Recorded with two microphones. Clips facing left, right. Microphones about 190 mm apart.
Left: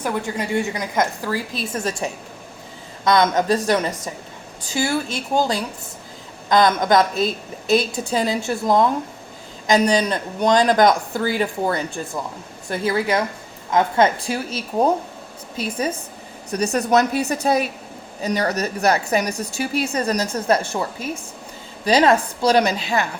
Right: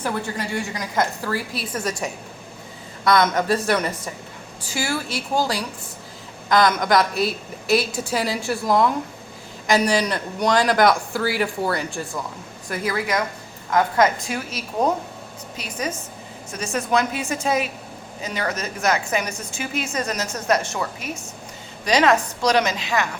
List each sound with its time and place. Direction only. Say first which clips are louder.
0.0 s a woman's voice: left 2 dB; 20° left (ahead or behind)
1.7 s a woman's voice: left 1 dB; 25° left (ahead or behind)
9.9 s a woman's voice: left 2 dB; 20° left (ahead or behind)